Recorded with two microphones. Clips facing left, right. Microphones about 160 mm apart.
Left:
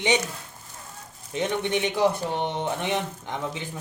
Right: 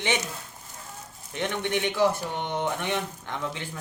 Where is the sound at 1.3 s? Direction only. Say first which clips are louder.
Left 3 dB; 20° left (ahead or behind).